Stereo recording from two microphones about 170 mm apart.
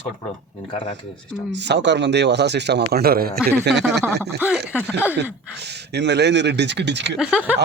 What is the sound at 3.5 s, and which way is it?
Speech, 85° right.